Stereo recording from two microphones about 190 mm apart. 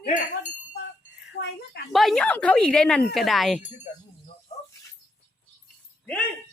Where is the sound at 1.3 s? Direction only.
60° left (ahead or behind).